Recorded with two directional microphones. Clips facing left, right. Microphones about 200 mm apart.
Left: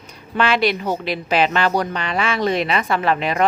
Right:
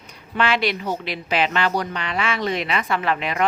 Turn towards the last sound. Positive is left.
turn(degrees=35)  # may be behind; listen again after turning